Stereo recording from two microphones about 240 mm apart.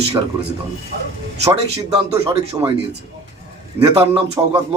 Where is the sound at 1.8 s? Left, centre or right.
Centre.